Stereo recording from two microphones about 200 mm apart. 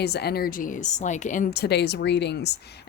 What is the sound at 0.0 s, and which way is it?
A woman's voice, 55° left (ahead or behind).